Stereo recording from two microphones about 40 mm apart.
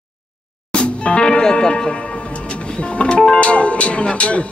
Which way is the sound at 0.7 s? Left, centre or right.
Left.